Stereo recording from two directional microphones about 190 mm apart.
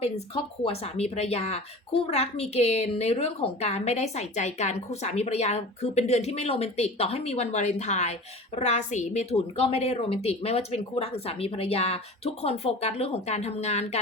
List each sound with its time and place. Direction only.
0.0 s speech: 30° left (ahead or behind)